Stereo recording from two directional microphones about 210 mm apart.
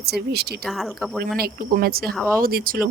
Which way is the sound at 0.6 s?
Centre (ahead or behind).